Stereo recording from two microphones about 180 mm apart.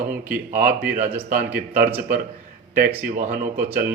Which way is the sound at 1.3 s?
50° right (ahead or behind).